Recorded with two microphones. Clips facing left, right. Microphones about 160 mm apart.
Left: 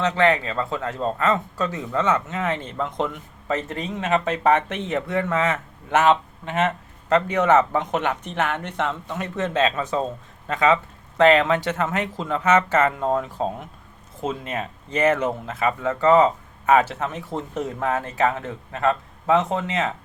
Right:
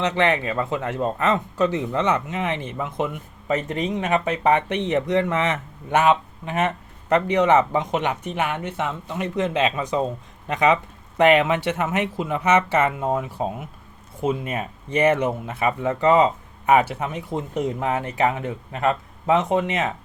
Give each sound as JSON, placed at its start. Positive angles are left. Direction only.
{"t": 0.0, "sound": "speech", "side_deg": -20}